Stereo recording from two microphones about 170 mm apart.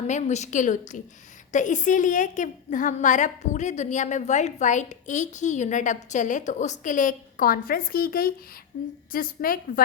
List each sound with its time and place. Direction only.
0.1 s a woman's voice: 40° left (ahead or behind)